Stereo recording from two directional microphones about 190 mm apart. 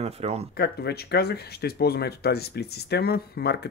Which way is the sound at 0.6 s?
55° left (ahead or behind).